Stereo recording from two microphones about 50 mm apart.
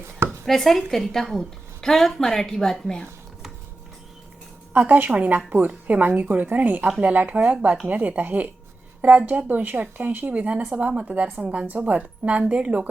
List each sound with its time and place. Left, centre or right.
0.4 s a woman's voice: centre
4.7 s a woman's voice: right
10.3 s a woman's voice: right